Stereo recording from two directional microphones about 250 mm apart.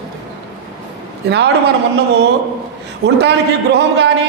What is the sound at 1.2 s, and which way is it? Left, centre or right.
Speech, right.